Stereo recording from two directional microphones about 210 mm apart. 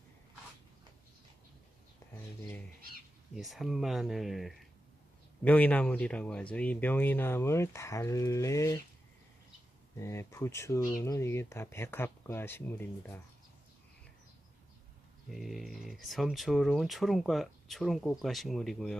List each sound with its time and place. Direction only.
3.3 s speech: centre (ahead or behind); by 8.8 s 15° left (ahead or behind)
10.0 s speech: 15° left (ahead or behind)
15.3 s speech: centre (ahead or behind)